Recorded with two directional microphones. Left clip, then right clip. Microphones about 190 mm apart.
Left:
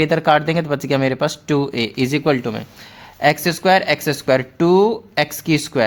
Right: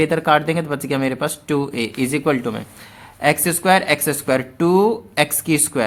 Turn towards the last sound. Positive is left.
turn(degrees=25)  # may be behind; listen again after turning